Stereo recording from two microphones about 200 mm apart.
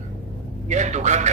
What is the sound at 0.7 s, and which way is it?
Speech, 35° right (ahead or behind).